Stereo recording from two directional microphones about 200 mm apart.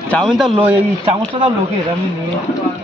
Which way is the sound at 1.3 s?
25° right (ahead or behind).